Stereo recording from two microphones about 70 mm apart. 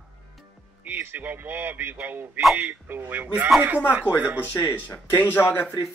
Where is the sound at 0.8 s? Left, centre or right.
Right.